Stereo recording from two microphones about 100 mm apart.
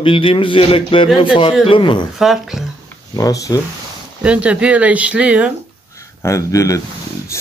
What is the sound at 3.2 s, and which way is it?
Speech, 35° left (ahead or behind).